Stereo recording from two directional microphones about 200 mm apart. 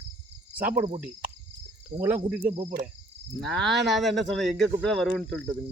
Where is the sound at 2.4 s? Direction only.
35° right (ahead or behind).